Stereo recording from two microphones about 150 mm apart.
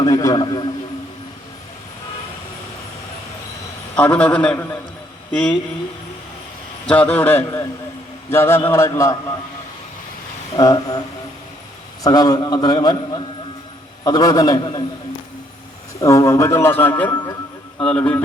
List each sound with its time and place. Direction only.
0.0 s a man's voice: 20° left (ahead or behind)
3.9 s speech: 10° left (ahead or behind)
6.8 s a man's voice: 10° left (ahead or behind)
10.6 s a man's voice: 25° left (ahead or behind)
12.0 s a man's voice: 25° left (ahead or behind)
16.0 s speech: 20° left (ahead or behind)
17.1 s speech: 25° left (ahead or behind)
17.7 s speech: 5° left (ahead or behind)